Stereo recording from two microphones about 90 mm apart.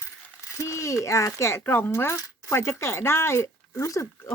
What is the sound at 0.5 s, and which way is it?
Speech, 35° left (ahead or behind).